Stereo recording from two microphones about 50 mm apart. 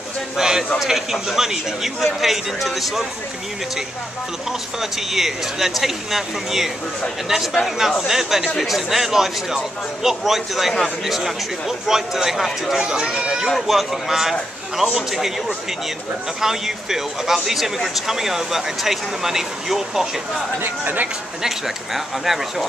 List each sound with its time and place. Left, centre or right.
0.4 s a man's voice: centre
4.5 s speech: centre
8.1 s a man's voice: centre
12.7 s a man's voice: centre
20.6 s speech: right
21.4 s a man's voice: centre